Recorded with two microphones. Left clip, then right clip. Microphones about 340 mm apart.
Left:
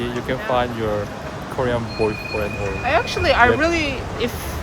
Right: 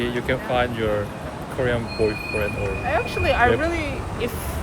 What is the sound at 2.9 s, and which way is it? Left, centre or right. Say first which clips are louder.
Speech: left 4 dB; left.